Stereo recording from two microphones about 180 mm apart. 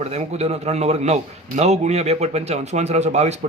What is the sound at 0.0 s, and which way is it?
A man's voice, 35° right (ahead or behind).